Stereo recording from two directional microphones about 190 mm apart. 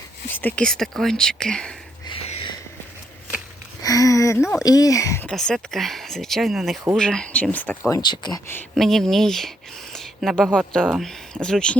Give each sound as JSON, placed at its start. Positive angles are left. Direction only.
{"t": 0.3, "sound": "speech", "side_deg": 10}
{"t": 2.0, "sound": "a sound", "side_deg": 30}
{"t": 3.8, "sound": "speech", "side_deg": 20}
{"t": 5.3, "sound": "speech", "side_deg": 0}
{"t": 7.9, "sound": "speech", "side_deg": 20}
{"t": 8.7, "sound": "speech", "side_deg": 0}
{"t": 9.9, "sound": "a sound", "side_deg": 0}
{"t": 10.8, "sound": "speech", "side_deg": 0}